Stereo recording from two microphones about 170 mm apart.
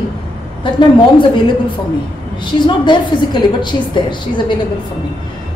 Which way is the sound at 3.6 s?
25° left (ahead or behind).